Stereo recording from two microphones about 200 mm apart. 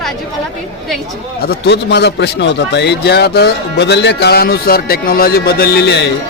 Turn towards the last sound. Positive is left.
turn(degrees=60)  # may be behind; listen again after turning